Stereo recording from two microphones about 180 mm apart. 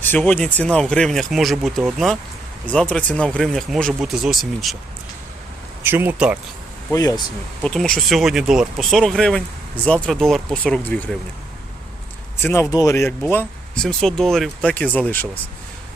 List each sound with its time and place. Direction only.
0.2 s speech: 5° left (ahead or behind)
5.8 s speech: 10° right (ahead or behind)
6.9 s speech: 20° left (ahead or behind)
7.6 s speech: 5° left (ahead or behind)
12.4 s speech: 15° left (ahead or behind)
13.3 s speech: 5° left (ahead or behind)